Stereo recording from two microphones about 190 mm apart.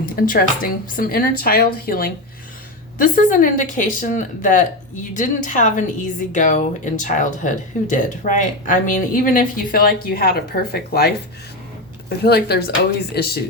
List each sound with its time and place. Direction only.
0.0 s a woman's voice: 50° left (ahead or behind)